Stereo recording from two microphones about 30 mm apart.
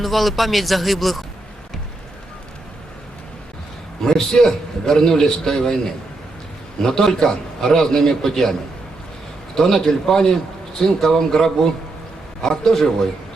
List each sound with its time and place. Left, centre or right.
0.0 s speech: centre
4.0 s a man's voice: centre
6.8 s a man's voice: centre
9.6 s a man's voice: centre